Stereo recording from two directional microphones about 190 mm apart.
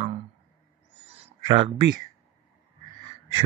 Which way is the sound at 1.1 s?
30° right (ahead or behind).